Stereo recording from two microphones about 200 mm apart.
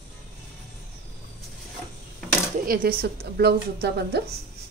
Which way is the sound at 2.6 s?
45° right (ahead or behind).